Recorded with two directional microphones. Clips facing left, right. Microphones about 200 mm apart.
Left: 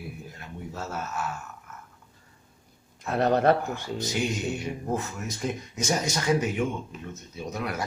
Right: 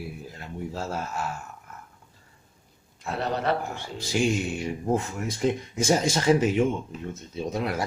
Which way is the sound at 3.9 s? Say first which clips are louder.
Right 5 dB; 30° right (ahead or behind).